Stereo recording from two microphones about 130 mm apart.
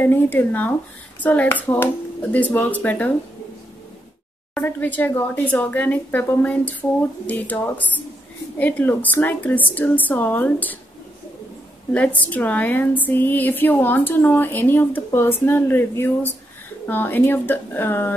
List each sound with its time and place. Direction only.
0.0 s a woman's voice: 15° left (ahead or behind)
4.6 s a woman's voice: 15° left (ahead or behind)
11.9 s a woman's voice: 10° left (ahead or behind)